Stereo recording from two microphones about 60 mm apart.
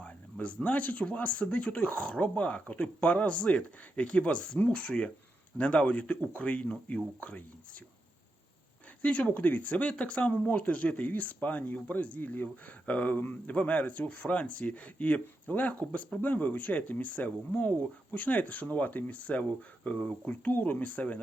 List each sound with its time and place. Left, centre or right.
0.0 s speech: left
9.0 s speech: centre